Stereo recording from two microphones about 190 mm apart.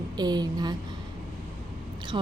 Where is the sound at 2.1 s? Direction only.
25° right (ahead or behind).